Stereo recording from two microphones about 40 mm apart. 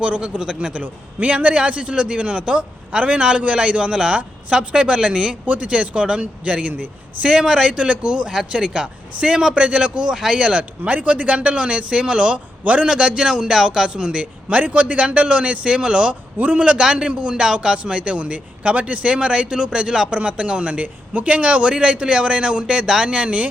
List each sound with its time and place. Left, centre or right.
0.0 s a man's voice: right
4.2 s speech: right
4.7 s a man's voice: right
12.9 s a man's voice: right
14.5 s a man's voice: right
16.4 s a man's voice: right; by 20.1 s centre
20.1 s a man's voice: right
23.1 s a man's voice: right